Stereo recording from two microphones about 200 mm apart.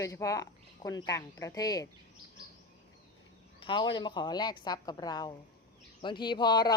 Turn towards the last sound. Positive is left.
turn(degrees=20)  # may be behind; listen again after turning